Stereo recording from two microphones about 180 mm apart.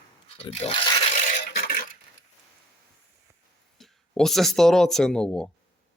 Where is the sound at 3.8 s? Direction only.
Centre (ahead or behind).